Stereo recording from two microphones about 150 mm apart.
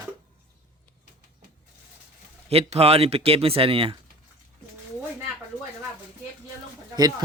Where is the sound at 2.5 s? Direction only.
40° right (ahead or behind).